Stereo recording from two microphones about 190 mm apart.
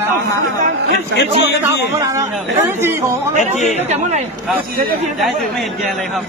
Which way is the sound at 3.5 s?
40° left (ahead or behind).